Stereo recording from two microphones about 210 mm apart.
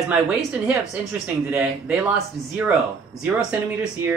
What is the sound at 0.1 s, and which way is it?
A man's voice, 5° right (ahead or behind).